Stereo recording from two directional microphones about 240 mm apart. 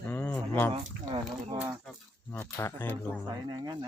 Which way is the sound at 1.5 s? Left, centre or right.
Centre.